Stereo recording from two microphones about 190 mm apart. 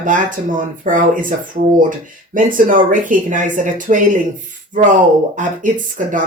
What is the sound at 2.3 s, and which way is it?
Speech, 45° right (ahead or behind).